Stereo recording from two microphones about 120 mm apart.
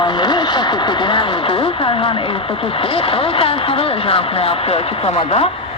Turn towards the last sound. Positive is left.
turn(degrees=55)  # may be behind; listen again after turning